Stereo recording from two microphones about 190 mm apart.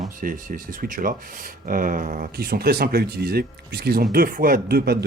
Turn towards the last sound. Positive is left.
turn(degrees=-55)  # may be behind; listen again after turning